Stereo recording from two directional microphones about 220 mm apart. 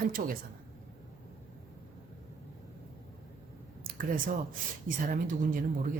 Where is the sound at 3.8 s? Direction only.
40° right (ahead or behind).